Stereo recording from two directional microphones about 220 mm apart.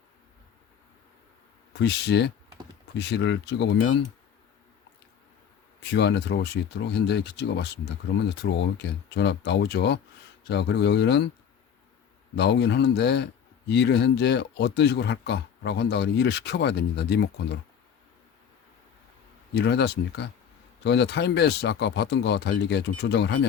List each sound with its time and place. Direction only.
1.8 s speech: 50° left (ahead or behind)
5.9 s speech: 50° left (ahead or behind)
12.4 s speech: 50° left (ahead or behind)
19.5 s speech: 50° left (ahead or behind)